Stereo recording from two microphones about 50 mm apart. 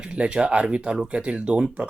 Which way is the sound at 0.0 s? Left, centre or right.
Right.